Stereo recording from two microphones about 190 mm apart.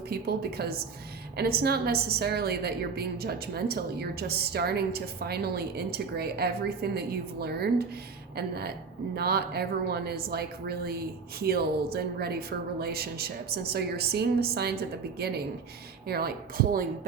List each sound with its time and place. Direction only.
0.1 s a woman's voice: 55° right (ahead or behind)